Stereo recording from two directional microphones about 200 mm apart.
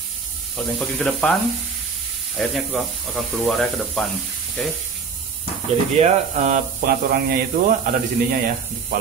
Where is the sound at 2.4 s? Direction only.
Centre (ahead or behind).